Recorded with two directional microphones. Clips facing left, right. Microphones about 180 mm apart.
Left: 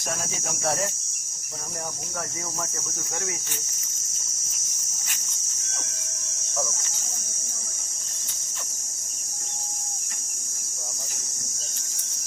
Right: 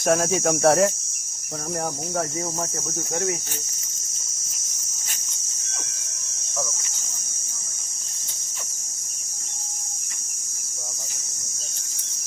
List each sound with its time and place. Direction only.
0.0 s speech: 60° right (ahead or behind)